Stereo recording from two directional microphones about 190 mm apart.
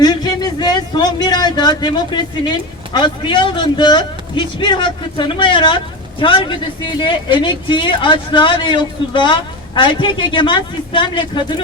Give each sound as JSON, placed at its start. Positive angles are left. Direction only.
{"t": 0.0, "sound": "speech", "side_deg": 20}